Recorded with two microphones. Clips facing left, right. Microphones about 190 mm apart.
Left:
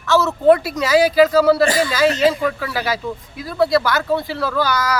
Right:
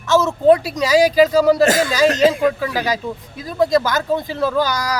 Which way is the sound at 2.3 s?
15° right (ahead or behind).